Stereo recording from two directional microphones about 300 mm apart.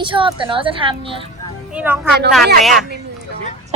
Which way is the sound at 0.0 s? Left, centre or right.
Centre.